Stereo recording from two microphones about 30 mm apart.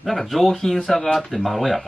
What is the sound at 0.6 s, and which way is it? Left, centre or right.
Speech, centre.